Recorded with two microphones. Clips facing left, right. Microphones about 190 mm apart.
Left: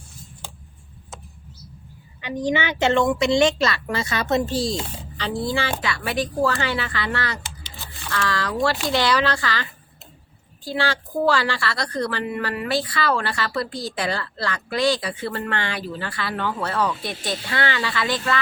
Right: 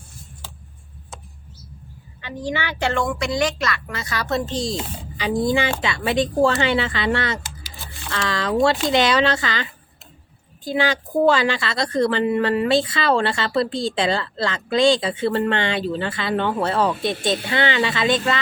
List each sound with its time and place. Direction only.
2.2 s a woman's voice: 20° left (ahead or behind)
4.5 s speech: centre (ahead or behind)
5.1 s a woman's voice: 15° right (ahead or behind)